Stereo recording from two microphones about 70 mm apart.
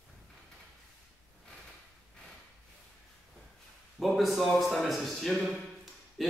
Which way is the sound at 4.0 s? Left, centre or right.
Centre.